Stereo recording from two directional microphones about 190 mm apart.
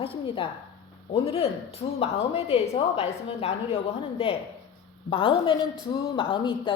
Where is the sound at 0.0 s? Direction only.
30° left (ahead or behind).